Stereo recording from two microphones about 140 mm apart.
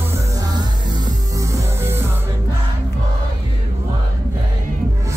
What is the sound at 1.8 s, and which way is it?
Music, 15° right (ahead or behind).